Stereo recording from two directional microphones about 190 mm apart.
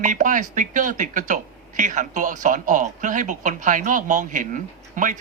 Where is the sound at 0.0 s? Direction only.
40° right (ahead or behind).